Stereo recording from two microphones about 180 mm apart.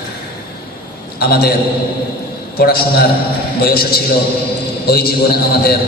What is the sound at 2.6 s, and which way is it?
A man's voice, 60° left (ahead or behind).